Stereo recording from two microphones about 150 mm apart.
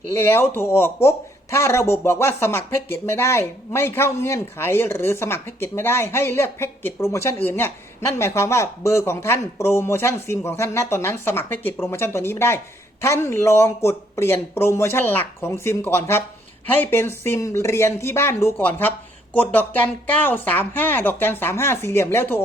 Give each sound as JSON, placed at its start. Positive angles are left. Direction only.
{"t": 0.2, "sound": "speech", "side_deg": 15}